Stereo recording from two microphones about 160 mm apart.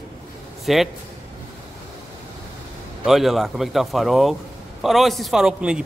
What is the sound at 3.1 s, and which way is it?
A man's voice, centre (ahead or behind).